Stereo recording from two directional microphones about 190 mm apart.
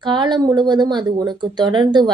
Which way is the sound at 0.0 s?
25° right (ahead or behind).